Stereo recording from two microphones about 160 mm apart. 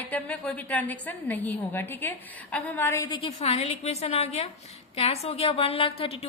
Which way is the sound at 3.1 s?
35° left (ahead or behind).